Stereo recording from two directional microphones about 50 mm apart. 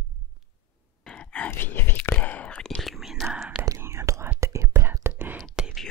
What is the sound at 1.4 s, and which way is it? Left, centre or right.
Whispering, left.